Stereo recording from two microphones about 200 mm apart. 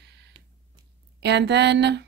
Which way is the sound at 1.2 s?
60° right (ahead or behind).